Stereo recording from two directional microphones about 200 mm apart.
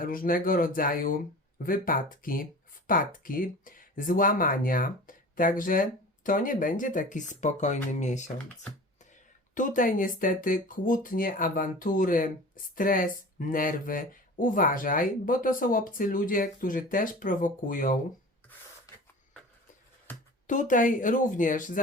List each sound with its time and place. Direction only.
0.0 s speech: 45° left (ahead or behind)
9.6 s speech: 40° left (ahead or behind)
20.5 s speech: 40° left (ahead or behind)